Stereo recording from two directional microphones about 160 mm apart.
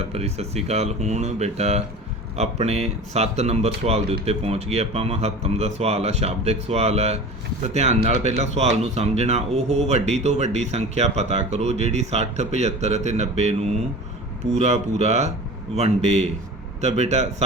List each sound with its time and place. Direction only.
0.0 s speech: 40° right (ahead or behind)